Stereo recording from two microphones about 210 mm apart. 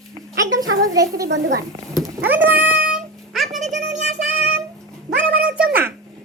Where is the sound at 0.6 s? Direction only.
70° right (ahead or behind).